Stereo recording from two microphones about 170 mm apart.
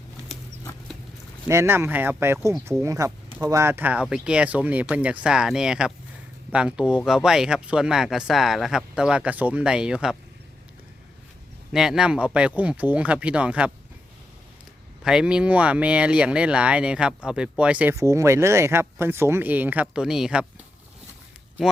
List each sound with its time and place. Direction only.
1.5 s speech: 15° right (ahead or behind)
11.7 s speech: 5° right (ahead or behind)
15.0 s speech: 5° right (ahead or behind)